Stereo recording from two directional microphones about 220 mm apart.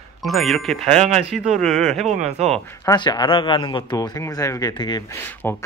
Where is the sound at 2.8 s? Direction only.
20° left (ahead or behind).